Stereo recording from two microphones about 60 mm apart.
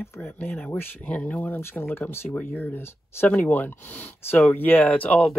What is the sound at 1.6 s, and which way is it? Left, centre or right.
Speech, left.